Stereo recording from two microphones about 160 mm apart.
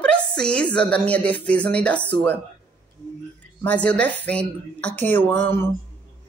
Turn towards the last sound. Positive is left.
turn(degrees=15)  # may be behind; listen again after turning